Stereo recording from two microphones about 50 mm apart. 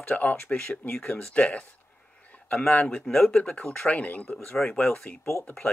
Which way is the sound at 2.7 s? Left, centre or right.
Left.